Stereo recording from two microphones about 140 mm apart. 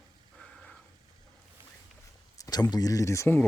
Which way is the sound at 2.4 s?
25° left (ahead or behind).